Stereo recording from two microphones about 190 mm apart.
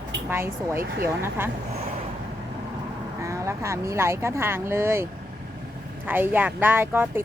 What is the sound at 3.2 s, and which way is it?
Speech, 15° right (ahead or behind).